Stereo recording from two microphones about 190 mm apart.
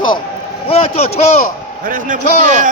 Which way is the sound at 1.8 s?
45° right (ahead or behind).